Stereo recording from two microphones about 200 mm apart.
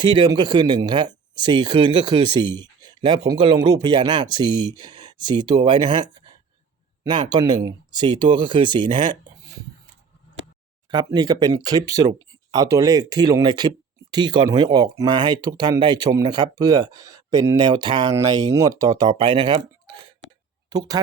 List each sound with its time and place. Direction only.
0.0 s speech: 20° right (ahead or behind)
10.9 s speech: 20° right (ahead or behind)